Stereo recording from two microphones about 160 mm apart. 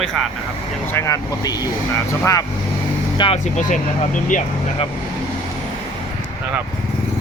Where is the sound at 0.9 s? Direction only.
20° left (ahead or behind).